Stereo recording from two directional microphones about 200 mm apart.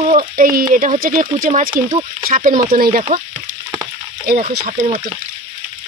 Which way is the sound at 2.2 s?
40° right (ahead or behind).